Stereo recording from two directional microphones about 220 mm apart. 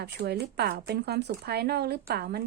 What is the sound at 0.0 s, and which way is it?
Speech, 50° right (ahead or behind).